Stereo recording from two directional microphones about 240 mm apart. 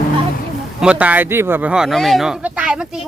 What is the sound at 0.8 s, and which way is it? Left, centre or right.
Speech, centre.